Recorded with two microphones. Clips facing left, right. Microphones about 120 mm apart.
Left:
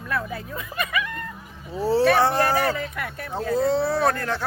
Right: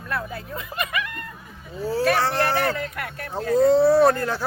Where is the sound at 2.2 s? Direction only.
15° left (ahead or behind).